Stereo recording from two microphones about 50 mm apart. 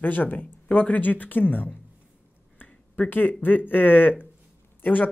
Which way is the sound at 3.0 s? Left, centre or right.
Left.